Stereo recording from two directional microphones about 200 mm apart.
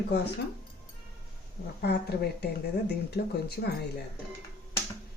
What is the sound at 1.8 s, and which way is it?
Speech, 55° left (ahead or behind).